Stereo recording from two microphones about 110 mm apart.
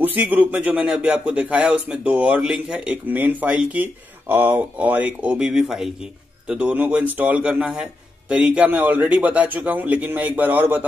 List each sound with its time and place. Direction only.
0.0 s a man's voice: 15° right (ahead or behind)